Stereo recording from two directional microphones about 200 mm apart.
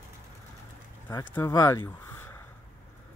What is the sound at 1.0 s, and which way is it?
Speech, 10° left (ahead or behind).